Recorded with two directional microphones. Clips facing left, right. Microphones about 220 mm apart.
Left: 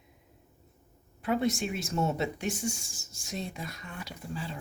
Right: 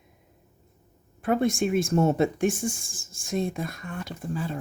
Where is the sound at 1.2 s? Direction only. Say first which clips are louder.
Right 5 dB; 50° right (ahead or behind).